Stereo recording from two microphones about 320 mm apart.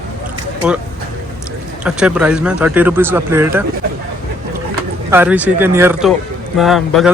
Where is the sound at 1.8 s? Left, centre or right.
Centre.